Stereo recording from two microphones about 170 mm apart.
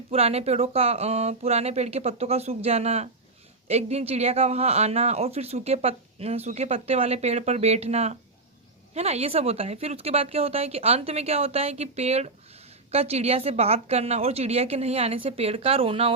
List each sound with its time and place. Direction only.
0.1 s speech: 35° right (ahead or behind)